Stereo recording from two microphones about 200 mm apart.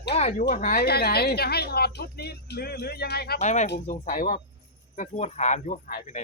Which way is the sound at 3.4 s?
35° left (ahead or behind).